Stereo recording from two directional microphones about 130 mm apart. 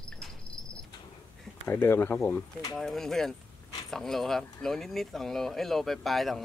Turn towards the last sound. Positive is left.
turn(degrees=0)  # may be behind; listen again after turning